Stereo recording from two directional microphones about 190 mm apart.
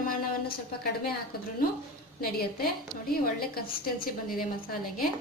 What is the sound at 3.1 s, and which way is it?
A woman's voice, 50° left (ahead or behind).